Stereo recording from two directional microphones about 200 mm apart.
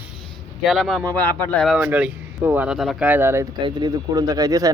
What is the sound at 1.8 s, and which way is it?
Speech, 5° right (ahead or behind).